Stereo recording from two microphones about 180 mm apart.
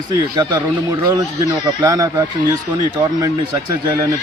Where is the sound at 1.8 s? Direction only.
20° right (ahead or behind).